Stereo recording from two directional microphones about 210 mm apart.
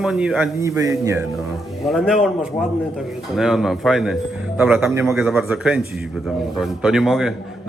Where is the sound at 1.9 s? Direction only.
Centre (ahead or behind).